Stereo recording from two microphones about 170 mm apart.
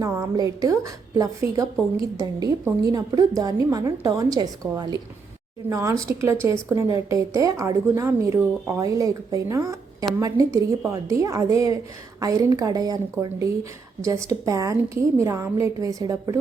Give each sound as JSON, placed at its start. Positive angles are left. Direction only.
{"t": 0.0, "sound": "a woman's voice", "side_deg": -20}